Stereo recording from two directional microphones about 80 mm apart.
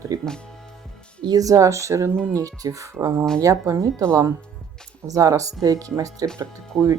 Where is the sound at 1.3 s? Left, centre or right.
Right.